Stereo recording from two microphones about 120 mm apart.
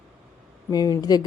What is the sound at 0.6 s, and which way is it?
Speech, 30° left (ahead or behind).